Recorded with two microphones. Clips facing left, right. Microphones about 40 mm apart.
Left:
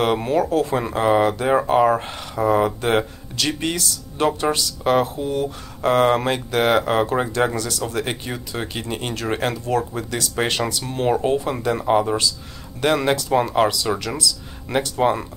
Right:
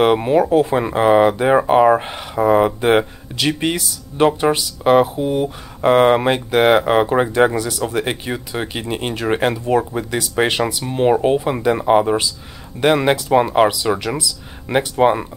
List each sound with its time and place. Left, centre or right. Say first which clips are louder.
0.0 s speech: right 5 dB; centre